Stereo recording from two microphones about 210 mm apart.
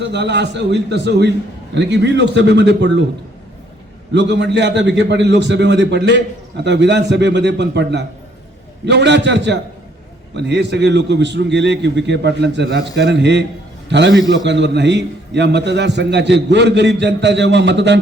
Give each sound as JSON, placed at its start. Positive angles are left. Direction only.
{"t": 0.0, "sound": "a man's voice", "side_deg": -55}
{"t": 4.1, "sound": "a man's voice", "side_deg": -55}